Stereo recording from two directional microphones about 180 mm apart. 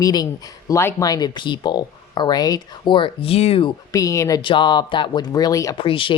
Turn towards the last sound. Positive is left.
turn(degrees=30)  # may be behind; listen again after turning